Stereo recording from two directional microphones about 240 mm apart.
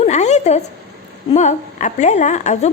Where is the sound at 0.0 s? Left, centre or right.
Left.